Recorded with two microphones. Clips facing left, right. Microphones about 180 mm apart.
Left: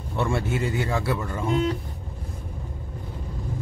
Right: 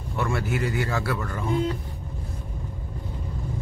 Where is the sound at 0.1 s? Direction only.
25° left (ahead or behind).